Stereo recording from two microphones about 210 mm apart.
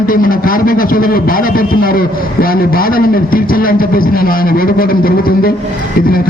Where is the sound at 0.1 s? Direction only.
40° left (ahead or behind).